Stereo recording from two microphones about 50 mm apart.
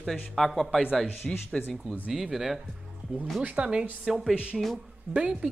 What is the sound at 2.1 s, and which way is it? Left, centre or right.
Speech, centre.